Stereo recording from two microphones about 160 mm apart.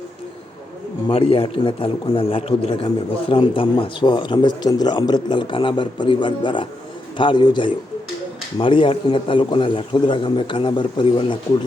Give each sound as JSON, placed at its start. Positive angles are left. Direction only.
{"t": 1.0, "sound": "a man's voice", "side_deg": 35}